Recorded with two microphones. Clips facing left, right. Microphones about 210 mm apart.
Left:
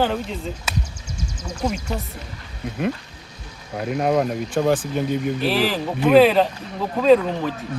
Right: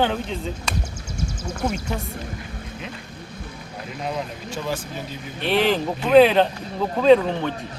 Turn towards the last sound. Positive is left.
turn(degrees=0)  # may be behind; listen again after turning